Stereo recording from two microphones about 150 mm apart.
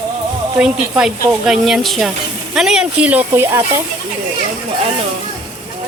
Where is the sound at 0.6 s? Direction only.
5° right (ahead or behind).